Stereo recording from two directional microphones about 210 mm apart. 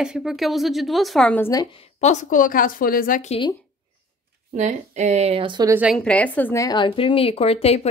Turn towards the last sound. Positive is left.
turn(degrees=30)  # may be behind; listen again after turning